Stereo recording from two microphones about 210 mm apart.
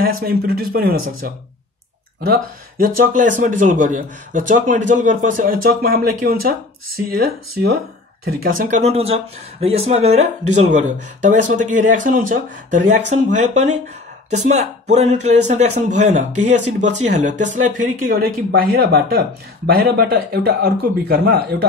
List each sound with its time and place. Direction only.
0.0 s speech: 45° right (ahead or behind)